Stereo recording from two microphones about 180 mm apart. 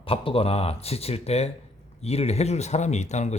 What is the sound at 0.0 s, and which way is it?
Speech, 30° left (ahead or behind).